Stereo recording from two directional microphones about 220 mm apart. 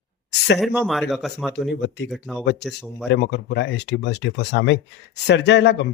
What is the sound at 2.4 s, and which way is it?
Speech, 50° left (ahead or behind).